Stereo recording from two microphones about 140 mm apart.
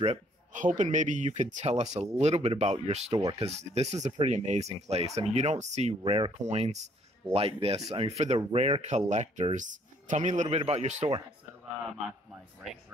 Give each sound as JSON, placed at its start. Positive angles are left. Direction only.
{"t": 0.0, "sound": "speech", "side_deg": -55}
{"t": 3.1, "sound": "speech", "side_deg": -30}
{"t": 3.3, "sound": "speech", "side_deg": -50}
{"t": 6.4, "sound": "speech", "side_deg": -50}